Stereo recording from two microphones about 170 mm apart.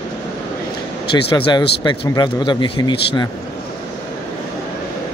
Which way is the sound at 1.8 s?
25° left (ahead or behind).